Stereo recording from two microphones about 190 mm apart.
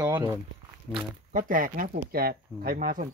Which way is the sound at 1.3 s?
45° right (ahead or behind).